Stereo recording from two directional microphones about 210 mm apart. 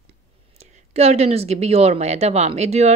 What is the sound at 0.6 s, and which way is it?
A woman's voice, 30° right (ahead or behind).